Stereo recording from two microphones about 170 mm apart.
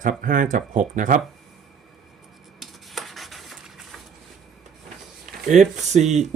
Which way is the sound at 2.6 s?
Centre (ahead or behind).